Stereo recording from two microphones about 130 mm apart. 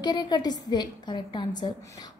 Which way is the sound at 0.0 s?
35° left (ahead or behind).